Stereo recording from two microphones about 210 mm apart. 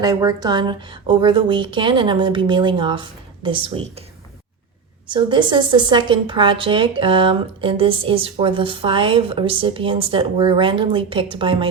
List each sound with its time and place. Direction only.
0.0 s a woman's voice: 20° right (ahead or behind)
5.0 s a woman's voice: 20° right (ahead or behind)